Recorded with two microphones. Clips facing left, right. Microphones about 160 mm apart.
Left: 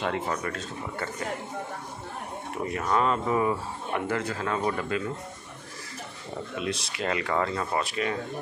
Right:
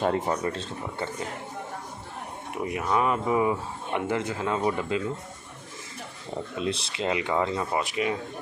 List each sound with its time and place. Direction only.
0.3 s speech: 25° right (ahead or behind)
2.5 s speech: 15° right (ahead or behind)
6.6 s speech: 30° right (ahead or behind)
7.1 s speech: 15° right (ahead or behind)